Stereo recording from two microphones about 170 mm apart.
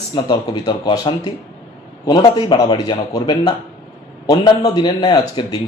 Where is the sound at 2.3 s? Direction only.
25° left (ahead or behind).